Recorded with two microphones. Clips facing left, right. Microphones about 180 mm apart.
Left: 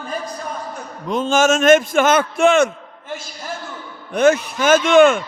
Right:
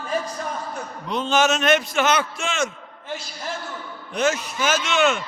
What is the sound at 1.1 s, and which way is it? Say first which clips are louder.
A man's voice: left 4 dB; 45° left (ahead or behind).